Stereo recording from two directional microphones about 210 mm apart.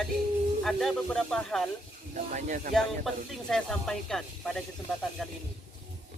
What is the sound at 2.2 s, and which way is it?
Speech, 35° right (ahead or behind).